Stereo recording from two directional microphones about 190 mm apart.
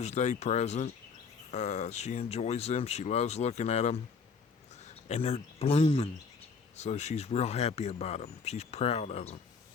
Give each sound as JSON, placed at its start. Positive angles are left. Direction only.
{"t": 0.0, "sound": "speech", "side_deg": 35}